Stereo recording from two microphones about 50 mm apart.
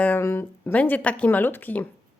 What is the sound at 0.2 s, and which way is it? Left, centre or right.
Speech, left.